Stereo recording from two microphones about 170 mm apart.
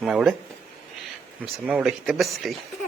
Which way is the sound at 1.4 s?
5° right (ahead or behind).